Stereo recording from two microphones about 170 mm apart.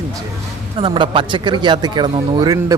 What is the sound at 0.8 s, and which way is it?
Speech, 25° right (ahead or behind).